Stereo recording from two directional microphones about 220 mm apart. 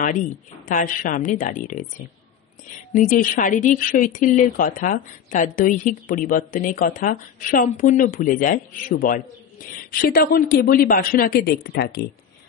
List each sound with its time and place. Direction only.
0.7 s a woman's voice: 35° left (ahead or behind)
2.9 s a woman's voice: 35° left (ahead or behind)